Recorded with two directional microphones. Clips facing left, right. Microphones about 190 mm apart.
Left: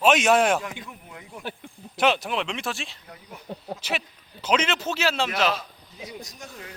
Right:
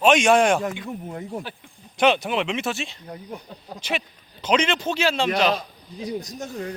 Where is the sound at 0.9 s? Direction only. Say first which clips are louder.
Right 11 dB; 40° right (ahead or behind).